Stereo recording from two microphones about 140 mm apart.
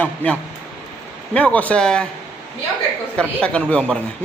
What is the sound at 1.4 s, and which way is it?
Speech, 10° left (ahead or behind).